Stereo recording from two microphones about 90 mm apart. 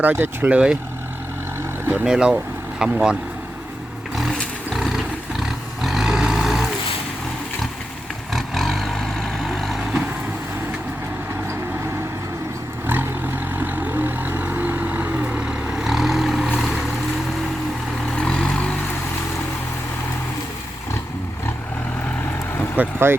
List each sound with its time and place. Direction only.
0.0 s speech: 20° right (ahead or behind)
2.0 s speech: 10° right (ahead or behind)
4.1 s a sound: 5° left (ahead or behind)
5.4 s roaring cats: 5° right (ahead or behind)
8.3 s vehicle: centre (ahead or behind)
12.9 s vehicle: 20° right (ahead or behind); by 16.5 s centre (ahead or behind)
18.1 s vehicle: 10° left (ahead or behind)
22.8 s speech: 25° right (ahead or behind)